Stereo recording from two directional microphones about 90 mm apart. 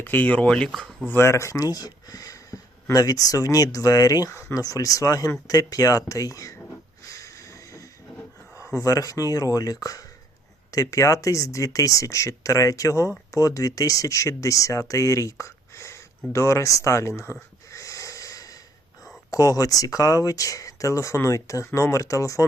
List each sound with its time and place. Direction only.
0.0 s speech: 20° left (ahead or behind)
0.7 s speech: centre (ahead or behind)
1.0 s speech: 30° left (ahead or behind)
4.3 s speech: 30° left (ahead or behind)
4.6 s speech: 40° left (ahead or behind)
7.1 s a sound: 40° left (ahead or behind)
8.7 s speech: 40° left (ahead or behind)
17.7 s wheeze: 35° left (ahead or behind)
19.3 s speech: 40° left (ahead or behind)